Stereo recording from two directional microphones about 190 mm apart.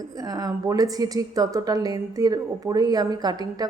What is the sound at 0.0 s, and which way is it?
A woman's voice, 20° right (ahead or behind).